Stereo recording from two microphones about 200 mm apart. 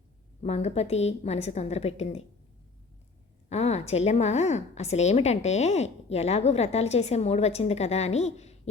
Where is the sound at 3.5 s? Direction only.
35° left (ahead or behind).